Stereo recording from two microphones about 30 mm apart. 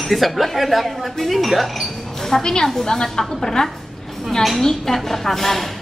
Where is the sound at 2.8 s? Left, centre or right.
Left.